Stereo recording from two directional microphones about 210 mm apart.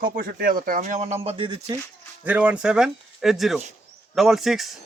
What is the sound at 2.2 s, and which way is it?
A man's voice, 5° right (ahead or behind).